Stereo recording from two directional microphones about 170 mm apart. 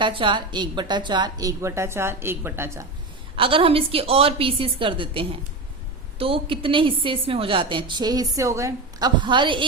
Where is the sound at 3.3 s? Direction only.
30° right (ahead or behind).